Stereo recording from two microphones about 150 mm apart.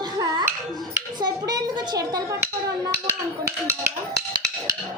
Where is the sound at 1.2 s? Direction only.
25° right (ahead or behind).